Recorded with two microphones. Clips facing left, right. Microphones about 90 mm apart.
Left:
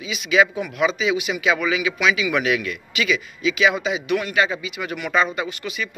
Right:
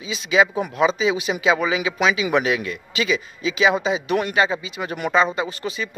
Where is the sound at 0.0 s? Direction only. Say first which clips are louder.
Even; 30° right (ahead or behind).